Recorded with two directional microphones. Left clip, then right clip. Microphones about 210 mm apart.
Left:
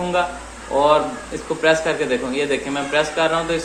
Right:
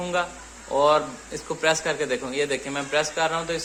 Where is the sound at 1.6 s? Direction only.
25° right (ahead or behind).